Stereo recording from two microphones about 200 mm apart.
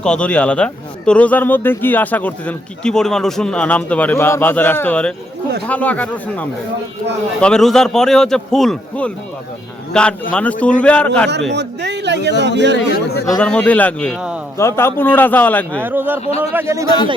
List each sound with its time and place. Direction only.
0.0 s a man's voice: 5° left (ahead or behind)
11.5 s a man's voice: 60° right (ahead or behind)
12.7 s speech: 50° left (ahead or behind)
13.4 s speech: 5° left (ahead or behind)
14.6 s a man's voice: 15° left (ahead or behind)
15.8 s a man's voice: 10° right (ahead or behind)